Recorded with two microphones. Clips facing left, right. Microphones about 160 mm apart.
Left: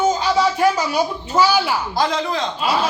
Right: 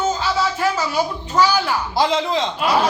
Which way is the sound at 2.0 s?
25° right (ahead or behind).